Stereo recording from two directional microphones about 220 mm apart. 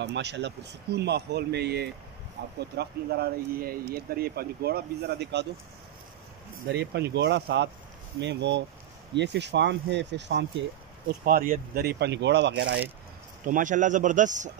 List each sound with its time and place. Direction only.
0.0 s speech: 50° right (ahead or behind)
6.7 s speech: 50° right (ahead or behind)
11.1 s speech: 40° right (ahead or behind)
13.5 s speech: 35° right (ahead or behind)